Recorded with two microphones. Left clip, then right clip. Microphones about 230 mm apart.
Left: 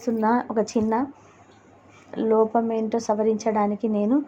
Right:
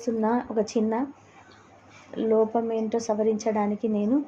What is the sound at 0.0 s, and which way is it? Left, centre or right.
A woman's voice, centre.